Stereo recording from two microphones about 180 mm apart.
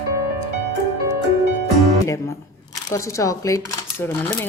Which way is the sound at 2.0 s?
15° left (ahead or behind).